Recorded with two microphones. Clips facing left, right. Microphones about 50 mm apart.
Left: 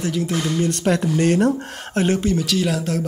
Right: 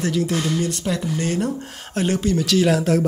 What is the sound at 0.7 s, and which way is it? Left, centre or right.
Speech, left.